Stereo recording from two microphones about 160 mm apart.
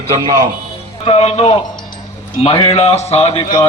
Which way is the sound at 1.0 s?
40° left (ahead or behind).